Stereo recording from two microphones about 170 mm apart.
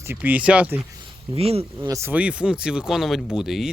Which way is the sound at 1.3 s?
35° right (ahead or behind).